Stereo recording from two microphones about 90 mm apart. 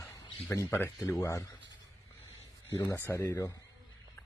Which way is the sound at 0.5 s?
30° left (ahead or behind).